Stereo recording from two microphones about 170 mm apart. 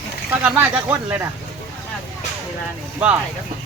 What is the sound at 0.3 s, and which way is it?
A man's voice, 10° right (ahead or behind).